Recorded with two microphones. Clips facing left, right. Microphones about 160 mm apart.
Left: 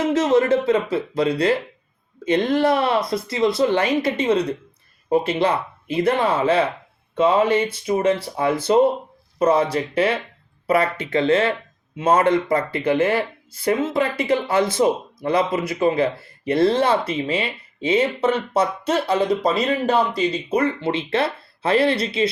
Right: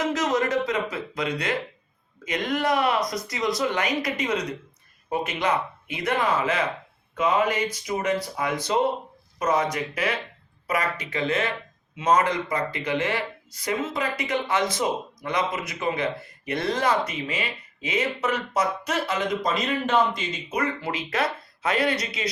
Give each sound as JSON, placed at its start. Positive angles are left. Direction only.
{"t": 0.0, "sound": "speech", "side_deg": 30}